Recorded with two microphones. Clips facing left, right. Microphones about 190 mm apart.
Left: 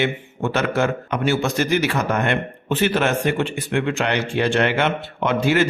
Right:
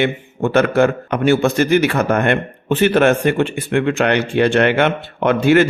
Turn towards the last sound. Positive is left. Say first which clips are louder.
# right 6 dB
turn(degrees=-60)  # may be behind; listen again after turning